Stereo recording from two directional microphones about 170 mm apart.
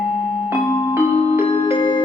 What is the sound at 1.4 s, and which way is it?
Music, 30° left (ahead or behind).